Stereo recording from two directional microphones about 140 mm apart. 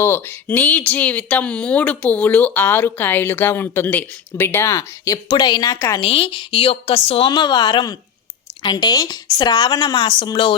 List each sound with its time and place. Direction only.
0.0 s speech: 15° left (ahead or behind)
6.0 s a woman's voice: 40° left (ahead or behind)